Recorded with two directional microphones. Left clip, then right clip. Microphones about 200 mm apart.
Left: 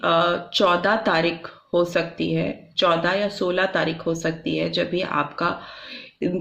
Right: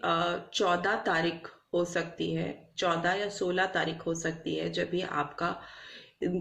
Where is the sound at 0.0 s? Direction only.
40° left (ahead or behind).